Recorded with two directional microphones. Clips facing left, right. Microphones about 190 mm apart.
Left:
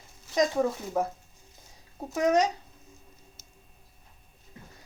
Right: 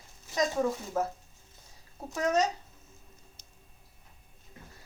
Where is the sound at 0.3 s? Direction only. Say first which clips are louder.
Left 3 dB; 15° left (ahead or behind).